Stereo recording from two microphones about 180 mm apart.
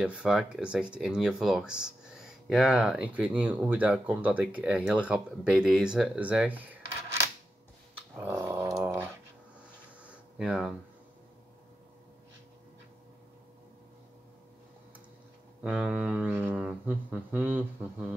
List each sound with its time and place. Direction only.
0.0 s speech: 5° right (ahead or behind)
8.2 s dog: 15° right (ahead or behind)
10.0 s a sound: 5° right (ahead or behind)
15.6 s speech: 5° right (ahead or behind)